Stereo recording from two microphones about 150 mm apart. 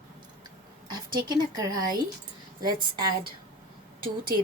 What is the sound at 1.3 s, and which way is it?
Speech, 25° right (ahead or behind).